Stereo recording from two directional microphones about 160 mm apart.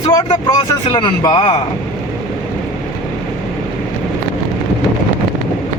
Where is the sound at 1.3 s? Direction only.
40° left (ahead or behind).